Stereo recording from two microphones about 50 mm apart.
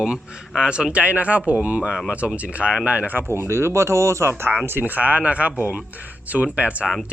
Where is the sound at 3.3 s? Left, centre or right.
Right.